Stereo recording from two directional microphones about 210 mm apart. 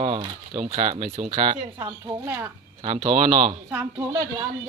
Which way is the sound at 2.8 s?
25° right (ahead or behind).